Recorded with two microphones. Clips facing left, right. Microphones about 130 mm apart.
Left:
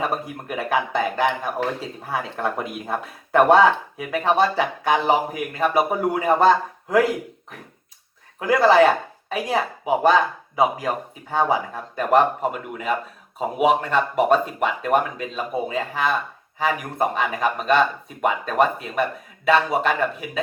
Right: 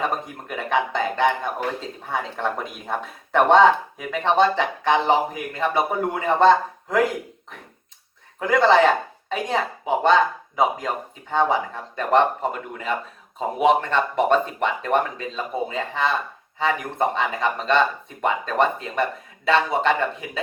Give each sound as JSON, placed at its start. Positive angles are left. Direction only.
{"t": 0.0, "sound": "speech", "side_deg": 5}
{"t": 8.4, "sound": "speech", "side_deg": 5}